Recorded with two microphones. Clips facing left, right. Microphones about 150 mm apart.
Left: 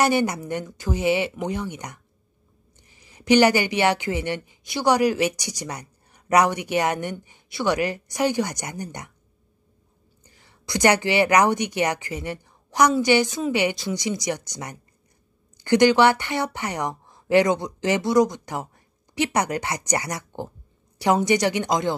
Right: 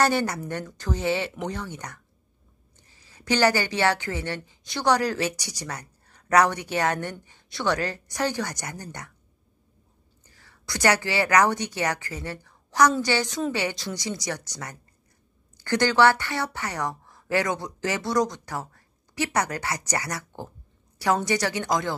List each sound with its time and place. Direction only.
0.0 s speech: 15° left (ahead or behind)
10.3 s a woman's voice: 20° left (ahead or behind)